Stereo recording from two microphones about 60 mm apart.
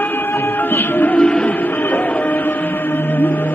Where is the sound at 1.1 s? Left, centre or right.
Centre.